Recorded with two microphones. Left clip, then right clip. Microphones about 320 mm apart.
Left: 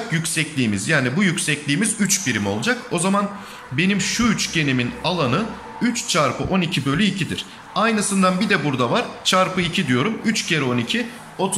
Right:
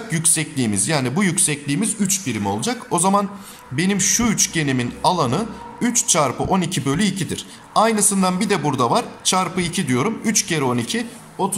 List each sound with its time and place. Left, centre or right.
0.1 s a man's voice: centre